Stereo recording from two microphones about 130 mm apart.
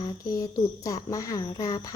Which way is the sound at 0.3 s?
25° left (ahead or behind).